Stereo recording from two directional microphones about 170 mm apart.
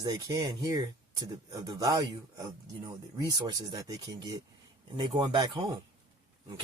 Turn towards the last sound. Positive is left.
turn(degrees=-25)  # may be behind; listen again after turning